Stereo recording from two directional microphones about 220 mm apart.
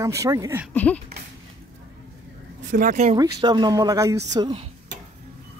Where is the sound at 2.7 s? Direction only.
35° right (ahead or behind).